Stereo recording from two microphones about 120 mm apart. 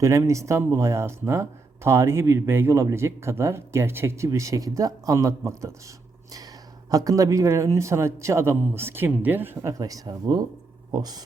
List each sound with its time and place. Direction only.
0.0 s speech: 25° right (ahead or behind)
6.9 s speech: 30° right (ahead or behind)